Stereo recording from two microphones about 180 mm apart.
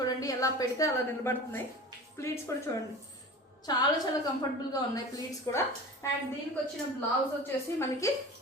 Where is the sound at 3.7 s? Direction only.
20° left (ahead or behind).